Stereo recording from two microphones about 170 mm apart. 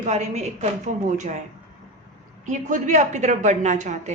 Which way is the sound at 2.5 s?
45° right (ahead or behind).